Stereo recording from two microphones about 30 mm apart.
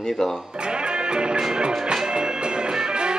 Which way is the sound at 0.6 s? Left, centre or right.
Right.